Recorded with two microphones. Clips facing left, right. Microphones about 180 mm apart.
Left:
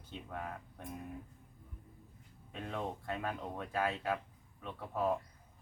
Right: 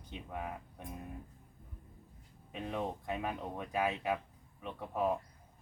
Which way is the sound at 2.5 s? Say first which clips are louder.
Right 2 dB; 15° right (ahead or behind).